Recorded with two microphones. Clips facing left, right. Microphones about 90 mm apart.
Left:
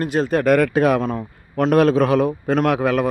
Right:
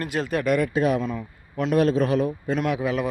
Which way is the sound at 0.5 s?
65° left (ahead or behind).